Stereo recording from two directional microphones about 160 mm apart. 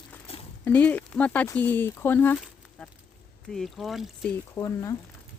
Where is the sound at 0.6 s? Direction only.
10° left (ahead or behind).